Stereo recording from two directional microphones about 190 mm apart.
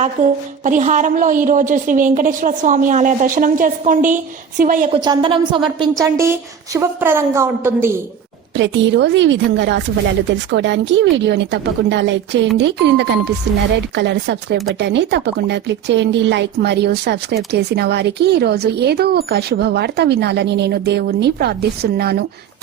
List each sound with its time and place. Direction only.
0.0 s a woman's voice: 35° right (ahead or behind)
4.9 s a woman's voice: 25° right (ahead or behind)
6.0 s a woman's voice: 15° right (ahead or behind)
8.5 s a woman's voice: 70° right (ahead or behind); by 22.2 s 55° right (ahead or behind)